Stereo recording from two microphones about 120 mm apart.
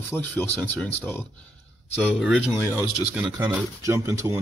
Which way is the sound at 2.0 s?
5° right (ahead or behind).